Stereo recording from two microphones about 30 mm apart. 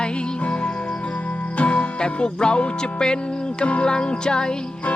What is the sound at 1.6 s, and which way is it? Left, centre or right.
Music, left.